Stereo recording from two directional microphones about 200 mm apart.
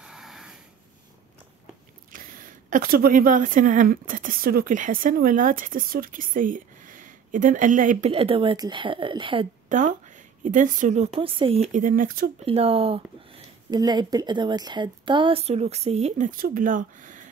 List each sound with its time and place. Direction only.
0.0 s a sound: centre (ahead or behind)
2.1 s a woman's voice: 45° right (ahead or behind); by 9.5 s 25° right (ahead or behind)
9.7 s a woman's voice: 40° right (ahead or behind)
11.1 s a woman's voice: 25° right (ahead or behind); by 12.3 s 45° right (ahead or behind)
12.4 s speech: 30° right (ahead or behind)